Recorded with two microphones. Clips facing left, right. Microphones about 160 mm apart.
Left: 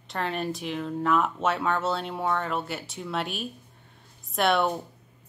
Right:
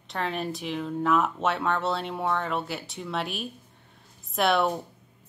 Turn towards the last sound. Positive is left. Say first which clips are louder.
# even
turn(degrees=0)  # may be behind; listen again after turning